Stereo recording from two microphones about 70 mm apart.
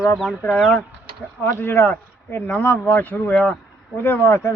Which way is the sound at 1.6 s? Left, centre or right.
Left.